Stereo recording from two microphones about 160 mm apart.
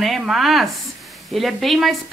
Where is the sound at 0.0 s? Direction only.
Centre (ahead or behind).